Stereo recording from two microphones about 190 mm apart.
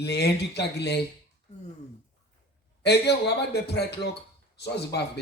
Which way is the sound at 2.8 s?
60° left (ahead or behind).